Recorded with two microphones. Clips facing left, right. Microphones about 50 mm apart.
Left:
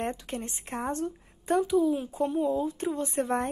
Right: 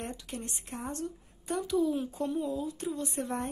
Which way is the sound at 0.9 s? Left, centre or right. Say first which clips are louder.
Left 5 dB; left.